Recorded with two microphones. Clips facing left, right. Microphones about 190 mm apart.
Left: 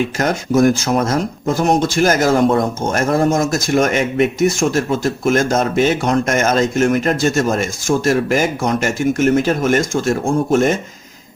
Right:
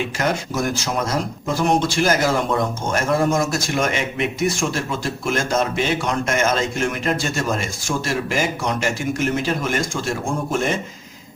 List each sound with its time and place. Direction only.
0.2 s speech: 45° left (ahead or behind)